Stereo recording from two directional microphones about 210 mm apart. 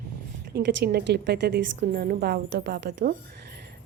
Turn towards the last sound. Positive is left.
turn(degrees=-50)  # may be behind; listen again after turning